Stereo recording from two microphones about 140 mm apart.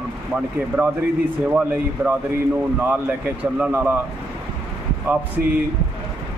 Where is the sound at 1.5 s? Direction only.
10° right (ahead or behind).